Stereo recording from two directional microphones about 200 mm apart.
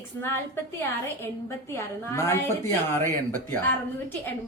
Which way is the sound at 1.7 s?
15° left (ahead or behind).